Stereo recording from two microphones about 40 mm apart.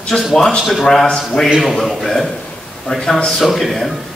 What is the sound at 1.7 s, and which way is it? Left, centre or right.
A man's voice, centre.